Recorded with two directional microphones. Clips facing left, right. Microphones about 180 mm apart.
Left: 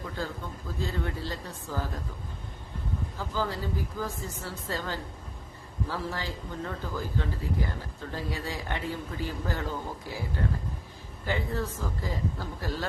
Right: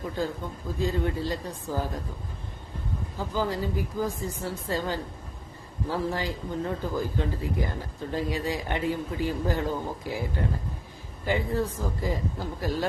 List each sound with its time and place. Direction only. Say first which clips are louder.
0.8 s a man's voice: right 6 dB; 15° right (ahead or behind)
3.2 s a man's voice: right 4 dB; 15° right (ahead or behind)
11.3 s a man's voice: right 4 dB; 15° right (ahead or behind)